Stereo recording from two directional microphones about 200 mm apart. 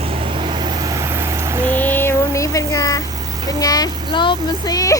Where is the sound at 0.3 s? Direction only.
25° right (ahead or behind).